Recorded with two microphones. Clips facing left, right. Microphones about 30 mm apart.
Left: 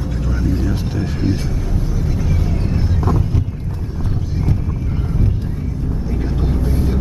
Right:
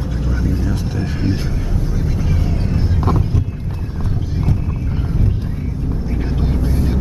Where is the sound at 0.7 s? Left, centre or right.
Centre.